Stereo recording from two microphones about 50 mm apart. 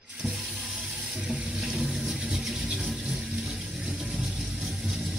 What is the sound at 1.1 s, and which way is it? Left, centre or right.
Water, centre.